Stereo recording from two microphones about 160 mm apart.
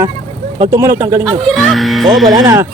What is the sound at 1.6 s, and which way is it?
Speech, centre (ahead or behind).